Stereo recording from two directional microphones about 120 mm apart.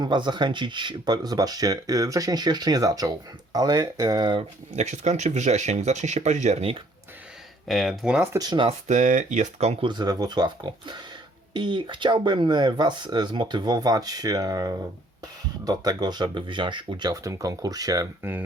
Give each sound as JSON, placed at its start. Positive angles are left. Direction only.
{"t": 0.0, "sound": "speech", "side_deg": -40}
{"t": 4.7, "sound": "speech", "side_deg": -65}
{"t": 7.7, "sound": "speech", "side_deg": 0}
{"t": 8.4, "sound": "speech", "side_deg": -35}
{"t": 8.9, "sound": "speech", "side_deg": -90}
{"t": 9.8, "sound": "speech", "side_deg": -35}